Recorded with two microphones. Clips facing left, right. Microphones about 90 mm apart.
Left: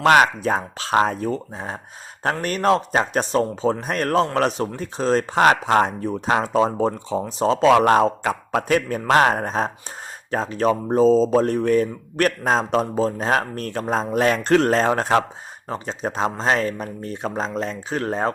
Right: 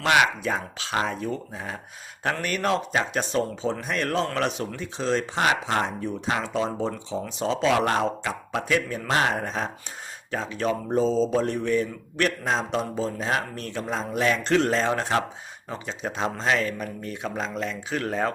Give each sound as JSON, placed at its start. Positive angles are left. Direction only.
{"t": 0.0, "sound": "speech", "side_deg": 45}